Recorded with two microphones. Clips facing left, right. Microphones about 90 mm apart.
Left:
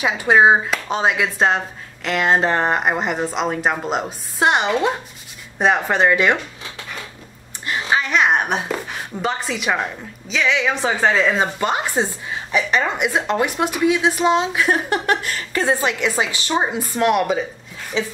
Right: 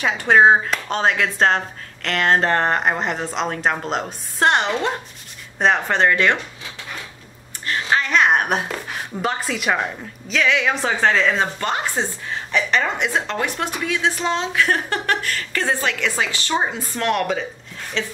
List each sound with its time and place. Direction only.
0.0 s a woman's voice: 5° left (ahead or behind)
7.6 s a sound: 10° left (ahead or behind)
8.9 s a woman's voice: centre (ahead or behind)